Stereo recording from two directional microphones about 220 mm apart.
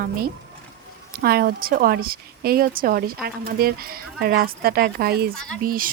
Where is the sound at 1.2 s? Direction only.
45° right (ahead or behind).